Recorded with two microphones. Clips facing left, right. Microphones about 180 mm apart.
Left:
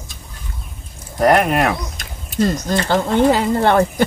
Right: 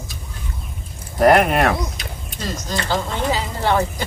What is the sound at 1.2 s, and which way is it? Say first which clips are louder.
Speech: even; centre (ahead or behind).